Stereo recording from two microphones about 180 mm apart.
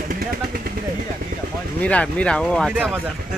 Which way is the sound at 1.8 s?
5° left (ahead or behind).